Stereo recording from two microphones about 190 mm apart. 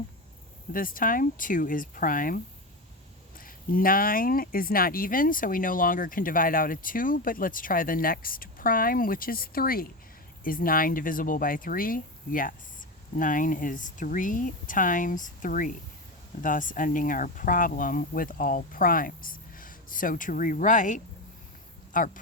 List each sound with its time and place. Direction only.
0.7 s speech: 50° left (ahead or behind)